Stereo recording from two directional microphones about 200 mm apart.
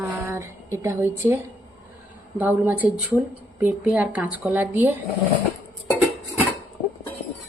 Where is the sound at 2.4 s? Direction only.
10° right (ahead or behind).